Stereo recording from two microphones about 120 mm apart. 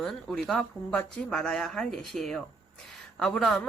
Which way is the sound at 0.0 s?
Centre (ahead or behind).